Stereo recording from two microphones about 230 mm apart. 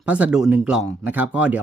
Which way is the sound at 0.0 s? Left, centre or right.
Centre.